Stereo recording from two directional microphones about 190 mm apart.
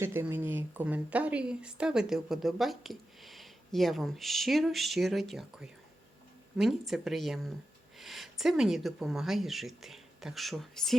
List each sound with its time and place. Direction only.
0.0 s speech: 15° right (ahead or behind)